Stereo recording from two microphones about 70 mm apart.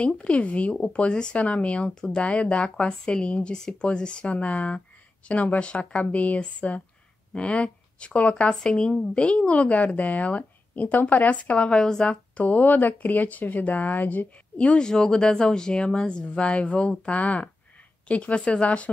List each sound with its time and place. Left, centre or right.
0.0 s a woman's voice: centre